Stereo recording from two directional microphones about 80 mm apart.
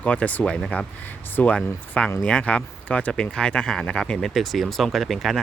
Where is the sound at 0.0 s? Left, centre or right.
Centre.